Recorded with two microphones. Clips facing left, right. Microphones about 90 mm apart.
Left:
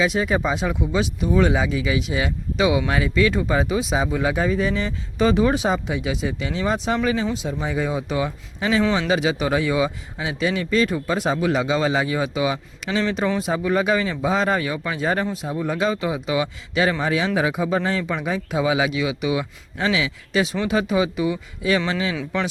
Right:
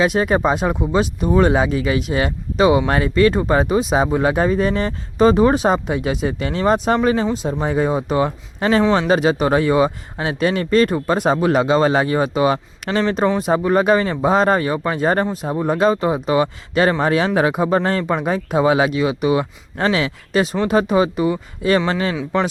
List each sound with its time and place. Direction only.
0.0 s speech: 55° right (ahead or behind)